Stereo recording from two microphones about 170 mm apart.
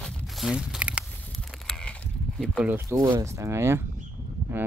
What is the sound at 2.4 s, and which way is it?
Speech, 5° right (ahead or behind).